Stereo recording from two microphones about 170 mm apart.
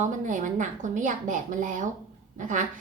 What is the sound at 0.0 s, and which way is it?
A woman's voice, 45° right (ahead or behind).